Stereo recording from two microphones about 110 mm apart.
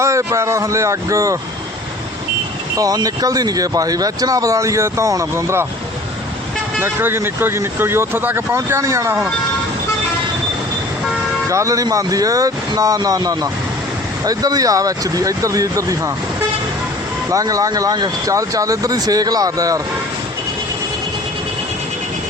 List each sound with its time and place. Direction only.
0.0 s speech: 25° right (ahead or behind)
2.7 s speech: 35° right (ahead or behind)
6.7 s speech: 20° right (ahead or behind)
11.4 s speech: 30° right (ahead or behind)
17.3 s speech: 30° right (ahead or behind)